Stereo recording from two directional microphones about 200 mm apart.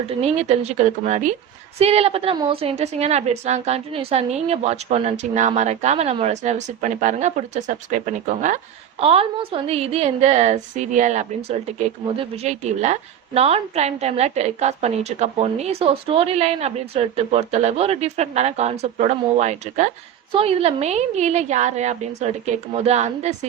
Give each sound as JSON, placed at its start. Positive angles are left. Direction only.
{"t": 0.1, "sound": "a woman's voice", "side_deg": -30}